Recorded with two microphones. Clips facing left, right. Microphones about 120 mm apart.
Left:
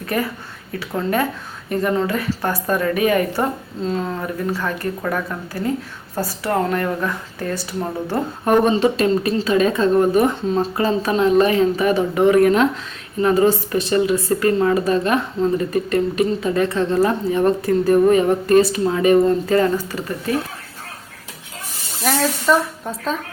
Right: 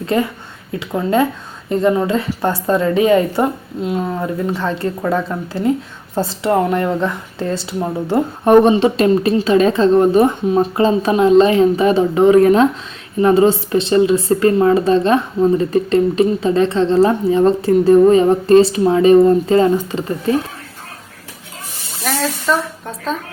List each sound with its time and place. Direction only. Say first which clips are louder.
0.0 s a woman's voice: right 5 dB; 25° right (ahead or behind)
3.8 s a woman's voice: right 3 dB; 10° right (ahead or behind)
10.4 s a woman's voice: right 5 dB; 15° right (ahead or behind)
22.0 s speech: left 1 dB; centre (ahead or behind)